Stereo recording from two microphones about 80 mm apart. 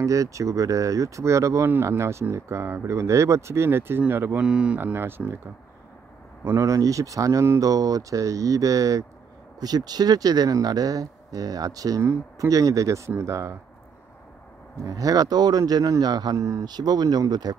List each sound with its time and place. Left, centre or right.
0.0 s speech: right
4.4 s speech: centre
4.7 s speech: right
6.4 s speech: right
9.6 s speech: right
12.0 s speech: right
14.9 s speech: right
16.3 s speech: right
16.6 s speech: right